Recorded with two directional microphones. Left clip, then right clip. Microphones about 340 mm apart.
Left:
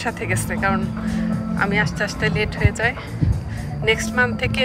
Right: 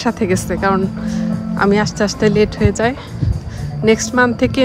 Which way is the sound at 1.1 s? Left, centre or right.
Centre.